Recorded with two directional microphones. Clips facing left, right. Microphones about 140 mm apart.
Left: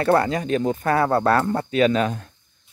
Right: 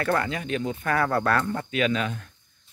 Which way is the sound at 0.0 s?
35° left (ahead or behind).